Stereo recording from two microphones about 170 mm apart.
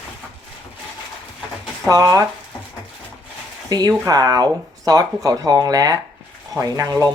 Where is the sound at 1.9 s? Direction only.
20° right (ahead or behind).